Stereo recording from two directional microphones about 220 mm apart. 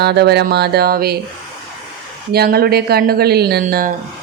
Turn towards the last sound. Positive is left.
turn(degrees=-45)  # may be behind; listen again after turning